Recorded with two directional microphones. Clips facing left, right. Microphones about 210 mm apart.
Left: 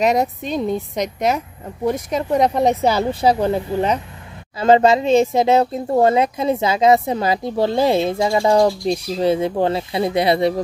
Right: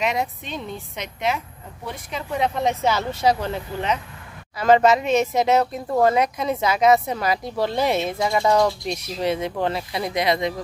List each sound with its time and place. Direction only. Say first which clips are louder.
0.0 s speech: left 7 dB; 40° left (ahead or behind)